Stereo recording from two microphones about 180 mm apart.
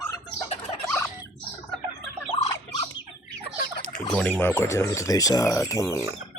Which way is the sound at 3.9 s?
5° left (ahead or behind).